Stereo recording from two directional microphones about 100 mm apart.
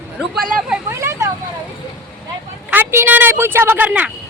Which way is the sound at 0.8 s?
30° right (ahead or behind).